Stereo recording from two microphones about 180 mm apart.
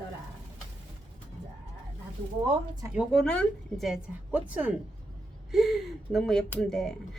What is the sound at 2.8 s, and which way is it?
A woman's voice, 5° right (ahead or behind).